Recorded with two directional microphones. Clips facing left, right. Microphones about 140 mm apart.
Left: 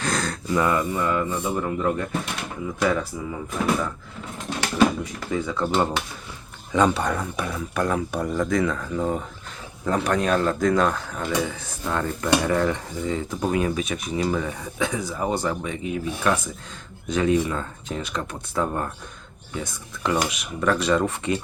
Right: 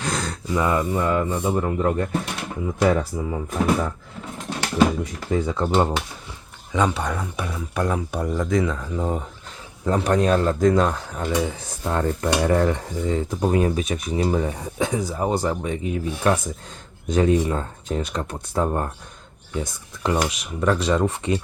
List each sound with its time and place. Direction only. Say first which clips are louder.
0.0 s speech: left 1 dB; 20° right (ahead or behind); by 3.9 s 40° right (ahead or behind)
5.3 s speech: right 3 dB; 35° right (ahead or behind)
6.9 s speech: left 1 dB; 10° right (ahead or behind)
9.8 s speech: right 3 dB; 30° right (ahead or behind)